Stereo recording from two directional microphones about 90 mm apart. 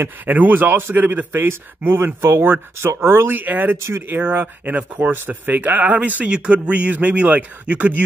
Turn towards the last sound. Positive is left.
turn(degrees=-15)  # may be behind; listen again after turning